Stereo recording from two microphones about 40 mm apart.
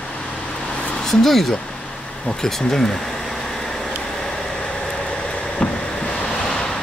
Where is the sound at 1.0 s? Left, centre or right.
Centre.